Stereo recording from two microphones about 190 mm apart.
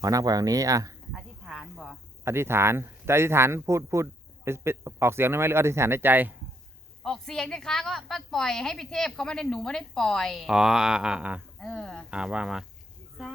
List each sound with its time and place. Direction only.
0.0 s speech: 20° right (ahead or behind)
1.1 s speech: centre (ahead or behind)
7.0 s a woman's voice: centre (ahead or behind)